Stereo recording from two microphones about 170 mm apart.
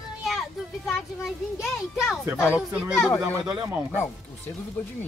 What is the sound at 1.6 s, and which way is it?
Speech, centre (ahead or behind).